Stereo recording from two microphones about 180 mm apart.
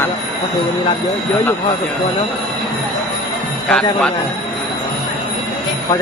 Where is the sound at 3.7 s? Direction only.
5° left (ahead or behind).